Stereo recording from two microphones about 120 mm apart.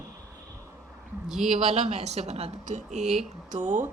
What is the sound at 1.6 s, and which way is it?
A woman's voice, 65° right (ahead or behind).